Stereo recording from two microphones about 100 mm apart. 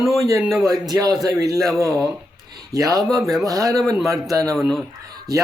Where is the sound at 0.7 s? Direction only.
40° right (ahead or behind).